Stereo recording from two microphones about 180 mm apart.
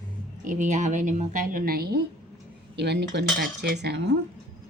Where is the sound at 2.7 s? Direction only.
70° right (ahead or behind).